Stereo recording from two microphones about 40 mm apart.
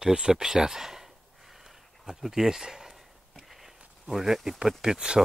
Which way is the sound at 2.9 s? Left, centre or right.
Centre.